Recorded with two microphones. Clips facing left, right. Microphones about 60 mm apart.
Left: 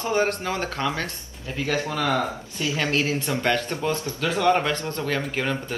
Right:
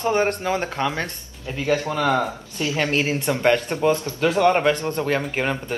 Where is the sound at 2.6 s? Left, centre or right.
Right.